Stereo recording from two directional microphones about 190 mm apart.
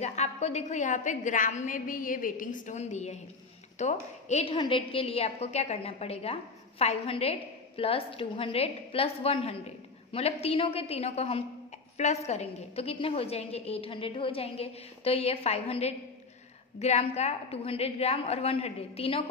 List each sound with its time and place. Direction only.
0.0 s a woman's voice: 35° left (ahead or behind)